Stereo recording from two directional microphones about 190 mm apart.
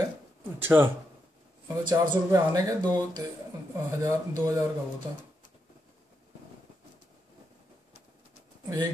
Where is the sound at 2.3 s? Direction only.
20° right (ahead or behind).